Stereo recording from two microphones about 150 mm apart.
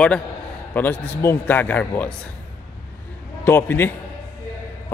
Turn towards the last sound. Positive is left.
turn(degrees=15)  # may be behind; listen again after turning